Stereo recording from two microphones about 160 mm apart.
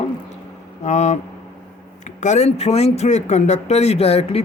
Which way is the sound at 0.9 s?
45° left (ahead or behind).